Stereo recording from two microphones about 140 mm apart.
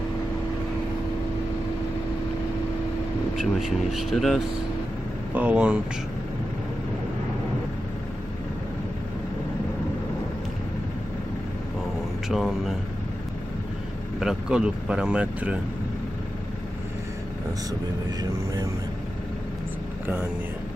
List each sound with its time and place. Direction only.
3.3 s speech: centre (ahead or behind)
5.3 s speech: 10° right (ahead or behind)
12.3 s speech: centre (ahead or behind)
14.2 s speech: 5° right (ahead or behind)
18.2 s speech: 25° right (ahead or behind)